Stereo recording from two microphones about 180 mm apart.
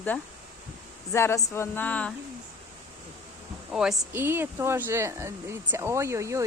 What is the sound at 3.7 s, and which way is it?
Speech, 5° right (ahead or behind).